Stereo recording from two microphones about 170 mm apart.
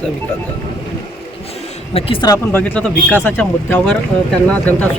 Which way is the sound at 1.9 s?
35° left (ahead or behind).